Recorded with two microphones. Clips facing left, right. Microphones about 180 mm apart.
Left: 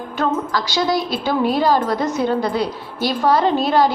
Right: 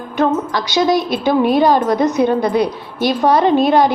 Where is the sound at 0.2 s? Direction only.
20° right (ahead or behind).